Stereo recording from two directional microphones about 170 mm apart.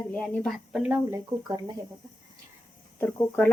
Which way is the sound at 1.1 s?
20° right (ahead or behind).